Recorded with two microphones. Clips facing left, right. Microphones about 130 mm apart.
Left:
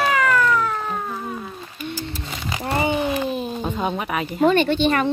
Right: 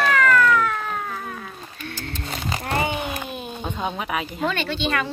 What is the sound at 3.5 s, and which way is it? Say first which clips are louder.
Speech: left 4 dB; 5° left (ahead or behind).